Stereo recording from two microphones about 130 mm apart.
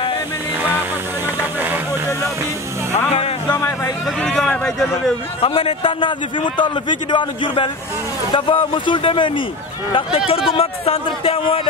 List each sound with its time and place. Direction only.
3.5 s a sound: 25° left (ahead or behind)
4.2 s speech: 5° left (ahead or behind)
5.4 s a man's voice: 45° left (ahead or behind)